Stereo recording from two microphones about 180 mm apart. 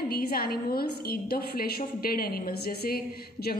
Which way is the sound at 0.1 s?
60° left (ahead or behind).